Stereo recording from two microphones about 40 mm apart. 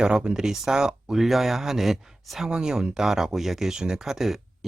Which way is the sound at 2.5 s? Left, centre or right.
Centre.